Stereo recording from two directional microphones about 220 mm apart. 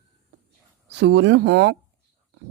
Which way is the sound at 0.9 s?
50° right (ahead or behind).